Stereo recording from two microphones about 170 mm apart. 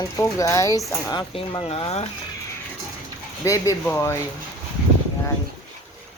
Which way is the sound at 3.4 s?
20° left (ahead or behind).